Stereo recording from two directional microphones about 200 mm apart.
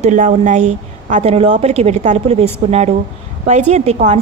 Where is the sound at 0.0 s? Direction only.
35° right (ahead or behind).